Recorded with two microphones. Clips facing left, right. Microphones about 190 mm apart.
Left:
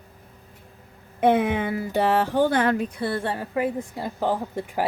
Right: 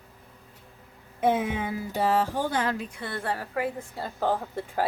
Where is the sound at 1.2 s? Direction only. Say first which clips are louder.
Left 5 dB; 65° left (ahead or behind).